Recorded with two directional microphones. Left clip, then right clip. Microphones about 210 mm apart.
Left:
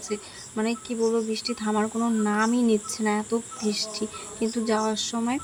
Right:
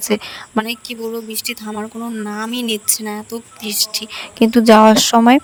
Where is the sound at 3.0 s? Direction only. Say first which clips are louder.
Even; centre (ahead or behind).